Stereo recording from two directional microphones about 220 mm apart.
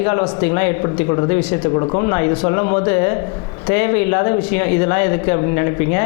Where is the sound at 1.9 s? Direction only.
25° left (ahead or behind).